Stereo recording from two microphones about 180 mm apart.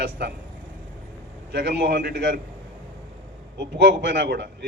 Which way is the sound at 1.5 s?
65° right (ahead or behind).